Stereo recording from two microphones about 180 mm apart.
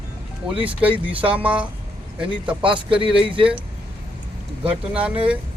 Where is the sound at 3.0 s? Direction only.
30° right (ahead or behind).